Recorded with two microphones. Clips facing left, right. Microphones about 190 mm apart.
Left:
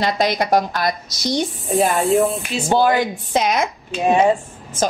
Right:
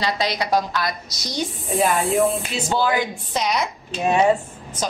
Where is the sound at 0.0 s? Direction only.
50° left (ahead or behind).